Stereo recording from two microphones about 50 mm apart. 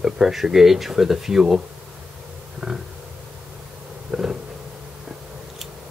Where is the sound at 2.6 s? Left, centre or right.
Right.